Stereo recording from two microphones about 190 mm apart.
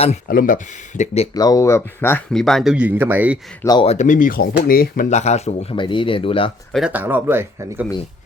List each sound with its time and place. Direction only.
0.3 s speech: 45° left (ahead or behind)
1.3 s speech: 20° left (ahead or behind); by 3.3 s 10° right (ahead or behind)
3.6 s speech: 20° left (ahead or behind)
3.8 s speech: 40° left (ahead or behind)
6.7 s speech: 5° right (ahead or behind)